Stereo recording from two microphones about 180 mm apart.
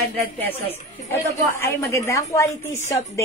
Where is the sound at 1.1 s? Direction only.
15° left (ahead or behind).